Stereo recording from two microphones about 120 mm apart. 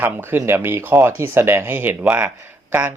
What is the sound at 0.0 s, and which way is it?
Speech, 20° right (ahead or behind).